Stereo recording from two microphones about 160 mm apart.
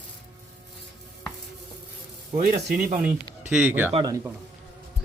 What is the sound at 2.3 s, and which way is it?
Speech, 60° right (ahead or behind).